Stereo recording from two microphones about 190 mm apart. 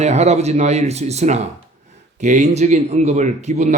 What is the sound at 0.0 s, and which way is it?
A man's voice, 35° right (ahead or behind).